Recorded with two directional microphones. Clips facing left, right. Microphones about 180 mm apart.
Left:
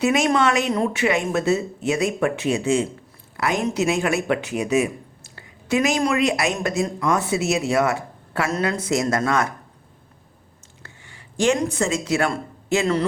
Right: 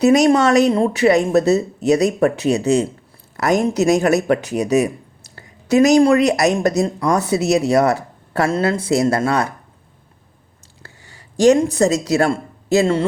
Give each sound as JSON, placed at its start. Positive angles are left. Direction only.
{"t": 0.0, "sound": "speech", "side_deg": -40}
{"t": 10.8, "sound": "speech", "side_deg": -40}